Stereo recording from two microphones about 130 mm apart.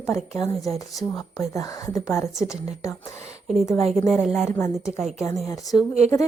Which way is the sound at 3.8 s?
Centre (ahead or behind).